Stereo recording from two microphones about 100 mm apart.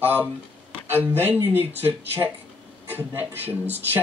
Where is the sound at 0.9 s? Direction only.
20° right (ahead or behind).